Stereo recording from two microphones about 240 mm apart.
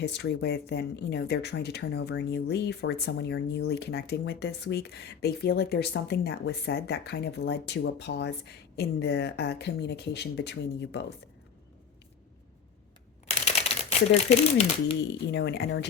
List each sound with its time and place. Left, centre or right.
0.0 s speech: left
13.2 s typewriter: left
14.1 s speech: left
15.3 s speech: left